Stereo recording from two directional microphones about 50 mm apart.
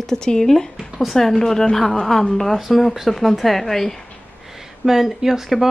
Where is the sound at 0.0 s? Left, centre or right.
Centre.